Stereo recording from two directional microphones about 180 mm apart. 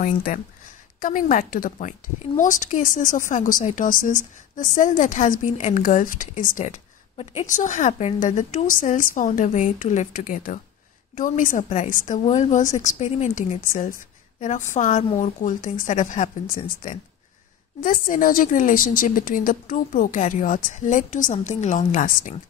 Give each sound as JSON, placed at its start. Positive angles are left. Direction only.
{"t": 0.0, "sound": "a woman's voice", "side_deg": 45}